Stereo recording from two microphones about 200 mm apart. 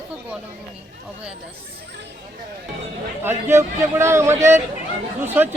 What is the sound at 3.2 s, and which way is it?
A man's voice, 10° right (ahead or behind).